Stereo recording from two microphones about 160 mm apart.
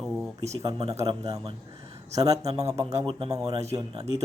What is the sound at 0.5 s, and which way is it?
A man's voice, 25° right (ahead or behind).